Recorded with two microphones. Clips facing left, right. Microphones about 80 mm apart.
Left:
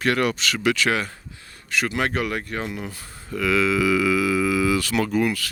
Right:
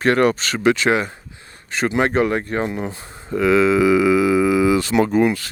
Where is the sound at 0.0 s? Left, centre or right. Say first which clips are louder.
Right 6 dB; right.